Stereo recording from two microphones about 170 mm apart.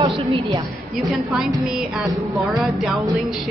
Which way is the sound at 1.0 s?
Centre (ahead or behind).